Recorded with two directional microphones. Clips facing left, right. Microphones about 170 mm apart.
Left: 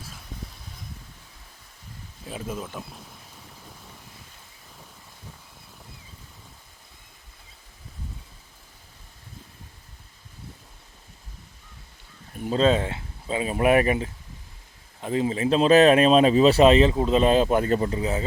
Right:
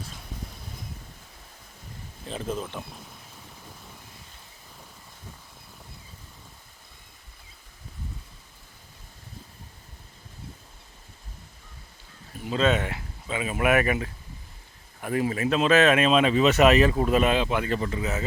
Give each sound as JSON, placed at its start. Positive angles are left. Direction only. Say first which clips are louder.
{"t": 2.2, "sound": "speech", "louder": "right 2 dB", "side_deg": 10}
{"t": 3.6, "sound": "vehicle", "louder": "even", "side_deg": 0}
{"t": 12.5, "sound": "speech", "louder": "left 3 dB", "side_deg": 30}